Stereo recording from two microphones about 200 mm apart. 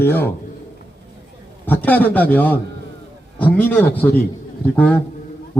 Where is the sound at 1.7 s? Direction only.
10° left (ahead or behind).